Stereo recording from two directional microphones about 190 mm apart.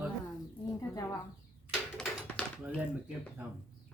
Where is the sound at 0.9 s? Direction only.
15° left (ahead or behind).